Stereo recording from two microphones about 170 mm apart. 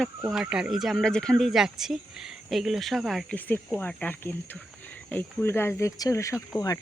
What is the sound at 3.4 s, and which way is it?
Speech, 10° left (ahead or behind).